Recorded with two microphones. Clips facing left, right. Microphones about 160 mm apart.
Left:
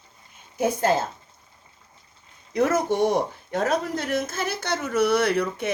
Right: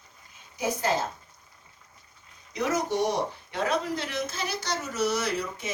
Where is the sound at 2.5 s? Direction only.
55° left (ahead or behind).